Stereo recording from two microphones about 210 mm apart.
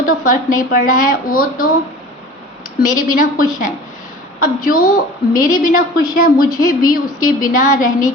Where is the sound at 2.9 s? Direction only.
40° left (ahead or behind).